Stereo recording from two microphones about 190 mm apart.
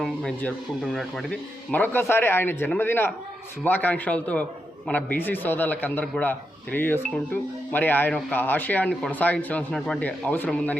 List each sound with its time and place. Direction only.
0.0 s speech: 5° left (ahead or behind)